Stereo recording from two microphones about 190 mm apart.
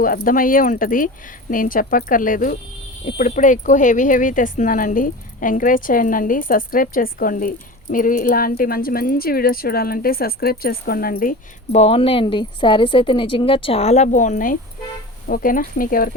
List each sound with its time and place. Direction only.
0.0 s speech: 45° left (ahead or behind)